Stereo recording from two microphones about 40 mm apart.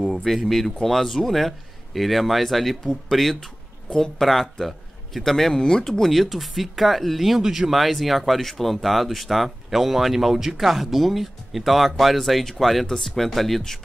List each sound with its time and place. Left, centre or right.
0.0 s a man's voice: centre
5.5 s speech: centre
5.9 s speech: centre
7.7 s speech: centre